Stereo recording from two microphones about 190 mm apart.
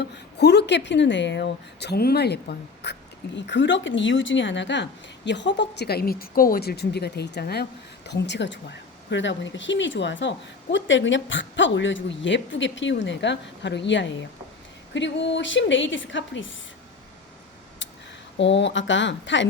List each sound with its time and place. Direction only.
0.0 s a woman's voice: 60° left (ahead or behind); by 16.5 s 80° left
18.3 s a woman's voice: 70° left (ahead or behind)